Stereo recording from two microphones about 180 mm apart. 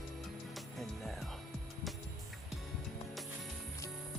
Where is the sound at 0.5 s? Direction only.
Centre (ahead or behind).